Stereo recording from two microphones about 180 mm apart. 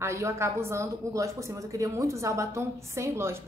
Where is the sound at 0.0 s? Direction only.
15° right (ahead or behind).